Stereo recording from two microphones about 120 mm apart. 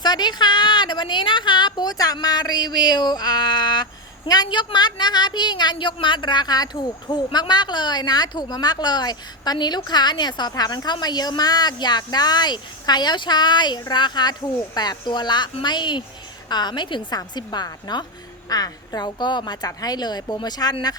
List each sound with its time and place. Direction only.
0.0 s a woman's voice: 35° left (ahead or behind)